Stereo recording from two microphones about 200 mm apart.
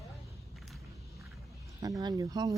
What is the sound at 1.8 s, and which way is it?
Speech, 15° right (ahead or behind).